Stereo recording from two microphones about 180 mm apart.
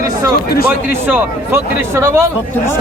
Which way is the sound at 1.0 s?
10° right (ahead or behind).